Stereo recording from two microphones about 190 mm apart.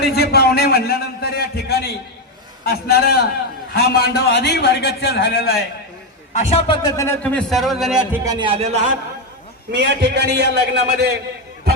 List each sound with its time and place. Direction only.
0.0 s a man's voice: 55° left (ahead or behind); by 5.5 s 75° left (ahead or behind)
6.3 s a man's voice: 30° left (ahead or behind); by 8.2 s 5° right (ahead or behind)
8.2 s a man's voice: 20° right (ahead or behind)
9.7 s a man's voice: 65° right (ahead or behind)